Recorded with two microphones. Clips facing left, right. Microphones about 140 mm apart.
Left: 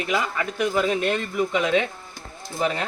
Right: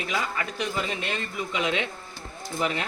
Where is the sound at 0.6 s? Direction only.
50° left (ahead or behind).